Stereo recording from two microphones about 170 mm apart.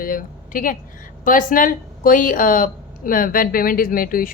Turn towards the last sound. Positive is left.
turn(degrees=55)  # may be behind; listen again after turning